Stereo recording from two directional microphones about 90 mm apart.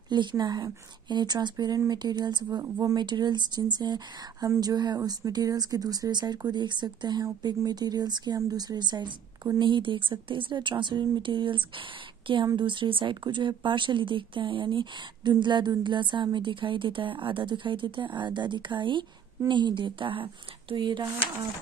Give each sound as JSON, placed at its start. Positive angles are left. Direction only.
{"t": 0.1, "sound": "speech", "side_deg": -55}
{"t": 2.6, "sound": "a woman's voice", "side_deg": -40}
{"t": 3.0, "sound": "a woman's voice", "side_deg": -55}